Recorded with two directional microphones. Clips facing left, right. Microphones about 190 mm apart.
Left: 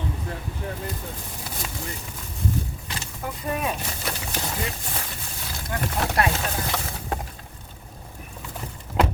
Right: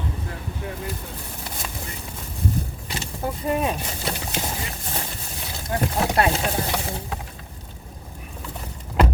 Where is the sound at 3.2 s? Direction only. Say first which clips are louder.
Right 4 dB; 25° right (ahead or behind).